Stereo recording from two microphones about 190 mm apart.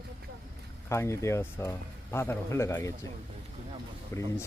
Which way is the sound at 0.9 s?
15° left (ahead or behind).